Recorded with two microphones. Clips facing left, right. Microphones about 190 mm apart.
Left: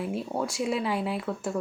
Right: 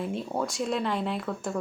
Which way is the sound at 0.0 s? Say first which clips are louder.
Even; 5° left (ahead or behind).